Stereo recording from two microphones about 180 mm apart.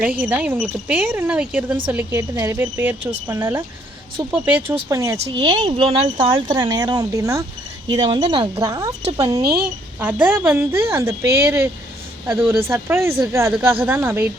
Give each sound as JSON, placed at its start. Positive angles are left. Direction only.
{"t": 0.0, "sound": "speech", "side_deg": -10}
{"t": 5.1, "sound": "speech", "side_deg": -30}
{"t": 9.4, "sound": "speech", "side_deg": -60}
{"t": 10.0, "sound": "speech", "side_deg": -10}